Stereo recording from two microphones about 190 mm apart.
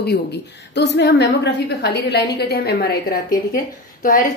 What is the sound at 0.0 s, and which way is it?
A woman's voice, 60° left (ahead or behind).